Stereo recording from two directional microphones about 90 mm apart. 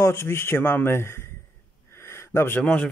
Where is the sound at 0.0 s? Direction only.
30° left (ahead or behind).